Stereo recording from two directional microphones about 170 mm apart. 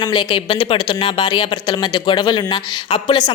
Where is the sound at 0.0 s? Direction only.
25° left (ahead or behind).